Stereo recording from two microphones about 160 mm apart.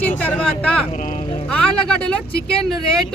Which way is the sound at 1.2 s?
35° left (ahead or behind).